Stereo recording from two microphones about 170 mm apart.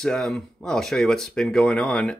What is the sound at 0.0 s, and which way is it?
Speech, 5° left (ahead or behind).